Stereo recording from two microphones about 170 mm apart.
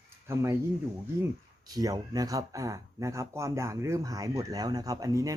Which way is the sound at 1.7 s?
20° right (ahead or behind).